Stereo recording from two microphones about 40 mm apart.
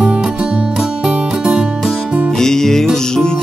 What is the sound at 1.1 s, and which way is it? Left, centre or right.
Music, right.